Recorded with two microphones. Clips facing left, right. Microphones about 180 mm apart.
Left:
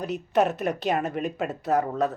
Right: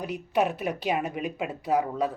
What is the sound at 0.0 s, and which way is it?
Speech, 10° right (ahead or behind).